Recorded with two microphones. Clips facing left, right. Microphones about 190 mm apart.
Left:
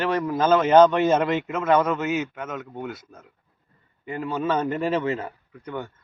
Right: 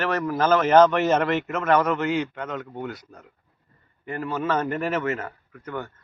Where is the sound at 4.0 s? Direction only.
15° left (ahead or behind).